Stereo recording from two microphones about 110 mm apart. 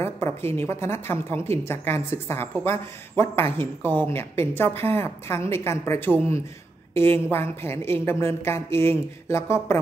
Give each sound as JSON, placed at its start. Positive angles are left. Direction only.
{"t": 0.0, "sound": "a woman's voice", "side_deg": 25}